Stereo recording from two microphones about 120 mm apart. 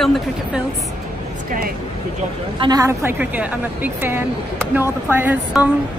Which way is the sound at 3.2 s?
10° right (ahead or behind).